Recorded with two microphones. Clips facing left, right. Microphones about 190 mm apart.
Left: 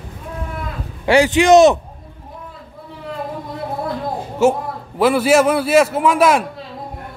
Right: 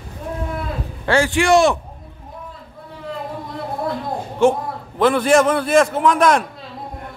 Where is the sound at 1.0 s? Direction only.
15° left (ahead or behind).